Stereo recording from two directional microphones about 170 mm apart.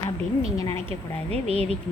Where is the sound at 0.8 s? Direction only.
35° right (ahead or behind).